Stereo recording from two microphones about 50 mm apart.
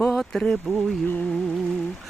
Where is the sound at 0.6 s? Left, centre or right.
Centre.